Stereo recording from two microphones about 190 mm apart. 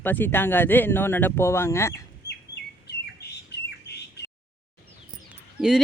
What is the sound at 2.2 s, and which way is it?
Bird, 60° left (ahead or behind).